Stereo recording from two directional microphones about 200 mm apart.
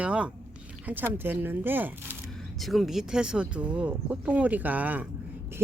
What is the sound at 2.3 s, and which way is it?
Speech, centre (ahead or behind).